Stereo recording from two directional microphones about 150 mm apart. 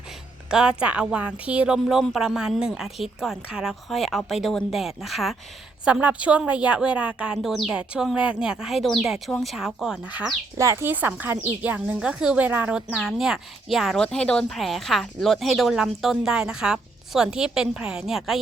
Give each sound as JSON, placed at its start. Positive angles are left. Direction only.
{"t": 0.5, "sound": "speech", "side_deg": -5}
{"t": 10.6, "sound": "speech", "side_deg": -20}